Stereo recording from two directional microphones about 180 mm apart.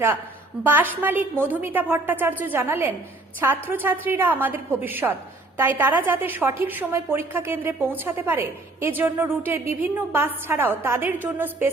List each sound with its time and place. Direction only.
0.6 s a woman's voice: 10° right (ahead or behind)